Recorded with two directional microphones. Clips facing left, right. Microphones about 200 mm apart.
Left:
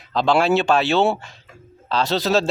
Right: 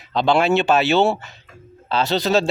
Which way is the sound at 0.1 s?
Centre (ahead or behind).